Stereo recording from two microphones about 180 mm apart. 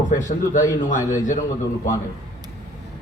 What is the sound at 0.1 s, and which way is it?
A man's voice, 45° left (ahead or behind).